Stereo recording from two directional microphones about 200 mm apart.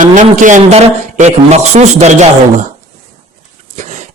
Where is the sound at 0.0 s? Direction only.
40° right (ahead or behind).